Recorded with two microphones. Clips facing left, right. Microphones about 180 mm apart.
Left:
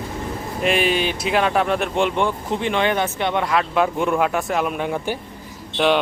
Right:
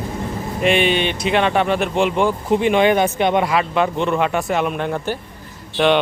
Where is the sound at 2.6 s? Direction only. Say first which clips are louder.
Right 6 dB; 15° right (ahead or behind).